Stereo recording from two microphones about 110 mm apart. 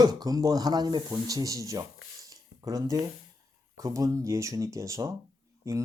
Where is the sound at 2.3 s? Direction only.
35° right (ahead or behind).